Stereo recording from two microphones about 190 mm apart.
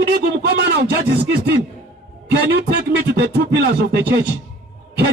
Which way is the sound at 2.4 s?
60° right (ahead or behind).